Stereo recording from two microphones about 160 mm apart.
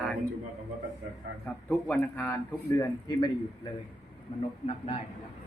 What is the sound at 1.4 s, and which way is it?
A man's voice, 10° left (ahead or behind).